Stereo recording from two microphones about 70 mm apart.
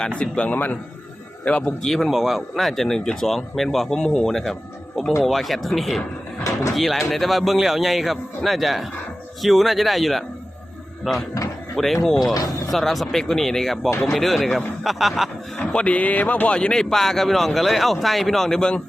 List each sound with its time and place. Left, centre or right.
0.2 s a man's voice: centre
1.8 s speech: centre
6.4 s speech: left
6.7 s speech: centre
12.3 s speech: left
12.7 s speech: centre
15.5 s speech: centre